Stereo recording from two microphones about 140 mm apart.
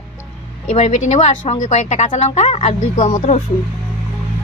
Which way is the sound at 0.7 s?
55° left (ahead or behind).